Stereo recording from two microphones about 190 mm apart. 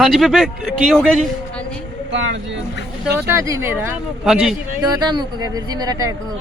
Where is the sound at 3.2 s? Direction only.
15° right (ahead or behind).